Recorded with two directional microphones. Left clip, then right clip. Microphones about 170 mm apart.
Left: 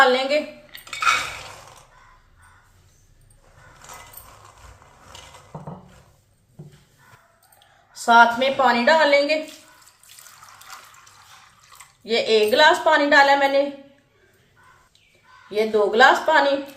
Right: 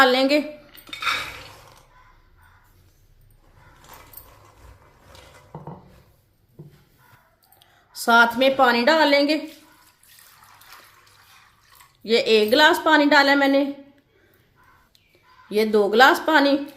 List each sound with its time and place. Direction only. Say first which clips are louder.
0.0 s dishes: even; 65° right (ahead or behind)
0.7 s cutlery: left 8 dB; 5° left (ahead or behind)
7.9 s a woman's voice: left 2 dB; 65° right (ahead or behind)
12.0 s a woman's voice: right 1 dB; 65° right (ahead or behind)
15.5 s a woman's voice: right 1 dB; 60° right (ahead or behind)